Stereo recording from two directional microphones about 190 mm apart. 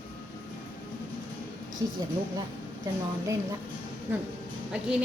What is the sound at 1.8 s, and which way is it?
Speech, 20° right (ahead or behind).